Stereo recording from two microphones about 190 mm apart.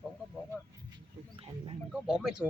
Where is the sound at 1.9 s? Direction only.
5° right (ahead or behind).